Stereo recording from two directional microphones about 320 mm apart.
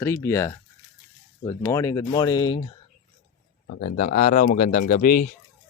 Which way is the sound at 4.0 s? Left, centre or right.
Left.